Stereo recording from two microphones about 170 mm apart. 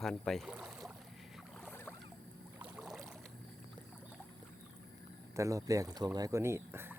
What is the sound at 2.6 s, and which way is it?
Boat, 5° right (ahead or behind).